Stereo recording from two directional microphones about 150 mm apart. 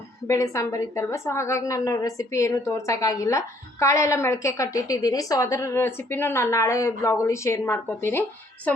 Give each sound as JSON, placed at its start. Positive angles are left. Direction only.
{"t": 0.3, "sound": "a woman's voice", "side_deg": 20}